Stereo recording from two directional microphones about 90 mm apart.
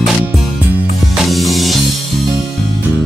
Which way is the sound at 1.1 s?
Centre (ahead or behind).